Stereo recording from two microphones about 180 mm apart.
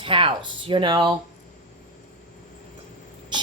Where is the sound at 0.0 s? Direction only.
30° right (ahead or behind).